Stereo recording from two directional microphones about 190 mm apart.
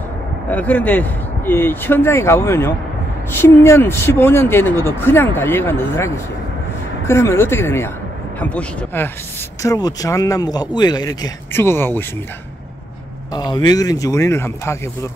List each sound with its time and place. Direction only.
0.5 s speech: 10° left (ahead or behind)
13.3 s speech: 20° left (ahead or behind)